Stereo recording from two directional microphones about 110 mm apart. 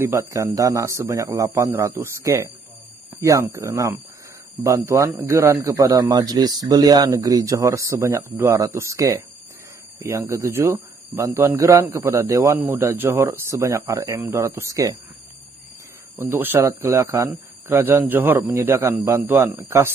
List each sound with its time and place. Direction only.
0.0 s a man's voice: 25° right (ahead or behind)
8.3 s a man's voice: 20° right (ahead or behind)
12.5 s a man's voice: 20° right (ahead or behind)
16.2 s a man's voice: 20° right (ahead or behind)